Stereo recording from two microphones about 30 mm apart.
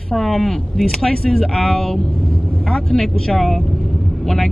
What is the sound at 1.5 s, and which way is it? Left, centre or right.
Speech, left.